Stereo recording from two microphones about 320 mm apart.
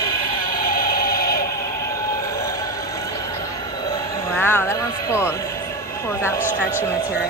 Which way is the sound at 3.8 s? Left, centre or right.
Centre.